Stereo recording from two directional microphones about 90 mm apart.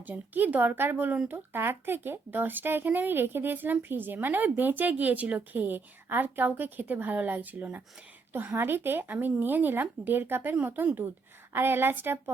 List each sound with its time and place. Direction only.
0.1 s speech: 20° right (ahead or behind)